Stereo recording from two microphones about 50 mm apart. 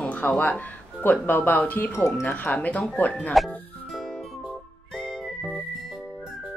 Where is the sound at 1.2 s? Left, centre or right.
Left.